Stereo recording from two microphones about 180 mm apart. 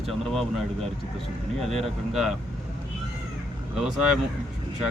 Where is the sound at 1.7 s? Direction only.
Centre (ahead or behind).